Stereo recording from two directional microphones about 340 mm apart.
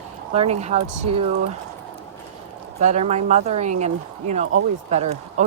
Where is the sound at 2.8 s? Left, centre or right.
Right.